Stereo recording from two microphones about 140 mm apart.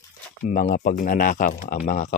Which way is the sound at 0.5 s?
75° left (ahead or behind).